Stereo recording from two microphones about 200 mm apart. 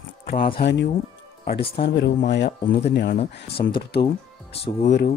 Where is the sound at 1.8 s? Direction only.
60° left (ahead or behind).